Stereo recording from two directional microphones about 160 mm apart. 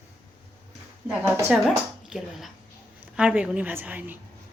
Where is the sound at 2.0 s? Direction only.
Centre (ahead or behind).